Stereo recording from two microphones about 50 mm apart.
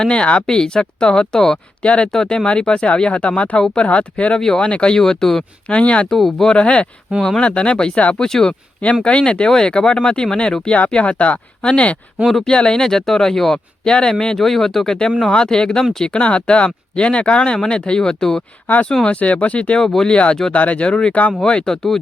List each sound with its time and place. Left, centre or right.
0.0 s speech: left
1.8 s speech: left
2.1 s speech: centre
4.4 s speech: centre
4.6 s speech: left
5.6 s speech: left
6.1 s speech: centre
7.2 s speech: centre
7.4 s speech: left; by 13.6 s centre
13.8 s speech: centre
19.0 s speech: left
19.8 s speech: centre
20.1 s speech: left
21.4 s speech: centre